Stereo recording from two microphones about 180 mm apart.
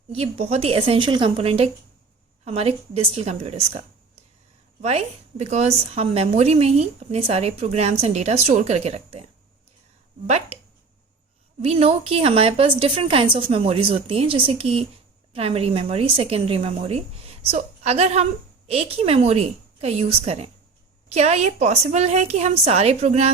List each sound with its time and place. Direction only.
0.1 s a woman's voice: 35° right (ahead or behind)
4.8 s a woman's voice: 35° right (ahead or behind)
10.2 s a woman's voice: 40° right (ahead or behind)
11.6 s a woman's voice: 35° right (ahead or behind)